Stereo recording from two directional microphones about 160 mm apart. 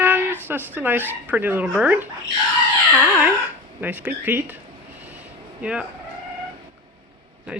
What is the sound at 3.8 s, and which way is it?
Speech, 10° right (ahead or behind).